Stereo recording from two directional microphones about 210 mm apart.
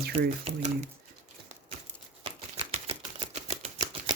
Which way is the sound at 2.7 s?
30° right (ahead or behind).